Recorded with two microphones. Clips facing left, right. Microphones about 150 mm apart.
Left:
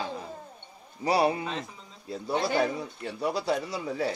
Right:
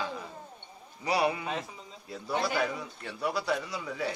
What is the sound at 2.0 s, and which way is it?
Speech, 25° left (ahead or behind).